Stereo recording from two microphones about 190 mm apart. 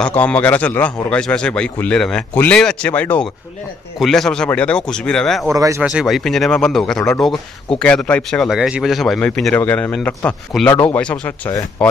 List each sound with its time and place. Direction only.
0.0 s a man's voice: 10° left (ahead or behind)
5.5 s speech: 15° right (ahead or behind)
5.8 s speech: 5° right (ahead or behind)